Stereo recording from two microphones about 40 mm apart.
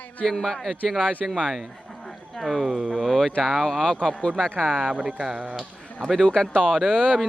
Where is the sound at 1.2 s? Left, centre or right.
Centre.